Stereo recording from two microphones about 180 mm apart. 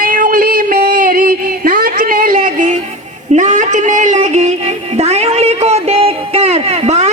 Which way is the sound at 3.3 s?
40° right (ahead or behind).